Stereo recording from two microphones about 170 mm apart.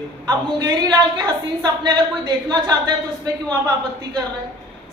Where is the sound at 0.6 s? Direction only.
25° right (ahead or behind).